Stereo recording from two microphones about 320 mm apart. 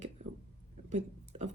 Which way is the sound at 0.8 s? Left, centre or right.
Right.